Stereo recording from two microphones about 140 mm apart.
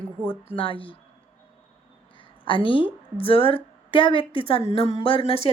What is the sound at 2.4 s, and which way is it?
A woman's voice, 40° left (ahead or behind).